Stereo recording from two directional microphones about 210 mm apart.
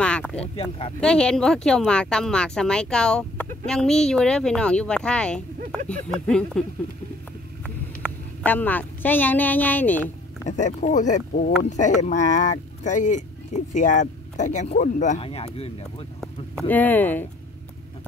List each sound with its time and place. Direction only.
0.0 s a sound: 5° left (ahead or behind)
0.4 s speech: 25° left (ahead or behind)
1.0 s speech: 5° left (ahead or behind)
7.6 s a woman's voice: 5° left (ahead or behind)
10.5 s speech: 35° left (ahead or behind)
16.2 s speech: 5° left (ahead or behind)